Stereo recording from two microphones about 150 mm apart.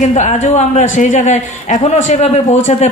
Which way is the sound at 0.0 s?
50° left (ahead or behind).